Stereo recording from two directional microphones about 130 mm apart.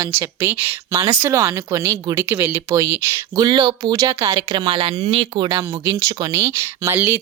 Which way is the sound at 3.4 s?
35° right (ahead or behind).